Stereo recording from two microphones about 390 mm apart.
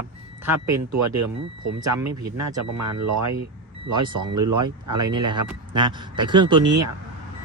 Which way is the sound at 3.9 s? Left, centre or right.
Centre.